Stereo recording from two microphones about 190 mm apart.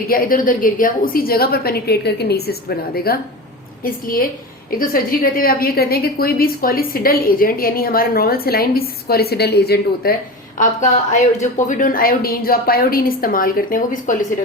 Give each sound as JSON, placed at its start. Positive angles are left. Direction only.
{"t": 0.1, "sound": "a woman's voice", "side_deg": 45}
{"t": 10.6, "sound": "a woman's voice", "side_deg": 40}